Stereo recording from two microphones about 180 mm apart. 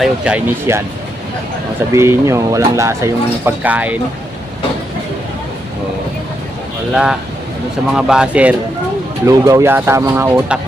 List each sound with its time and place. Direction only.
0.0 s speech: 5° right (ahead or behind)
1.9 s speech: 15° right (ahead or behind)
6.9 s speech: 5° right (ahead or behind)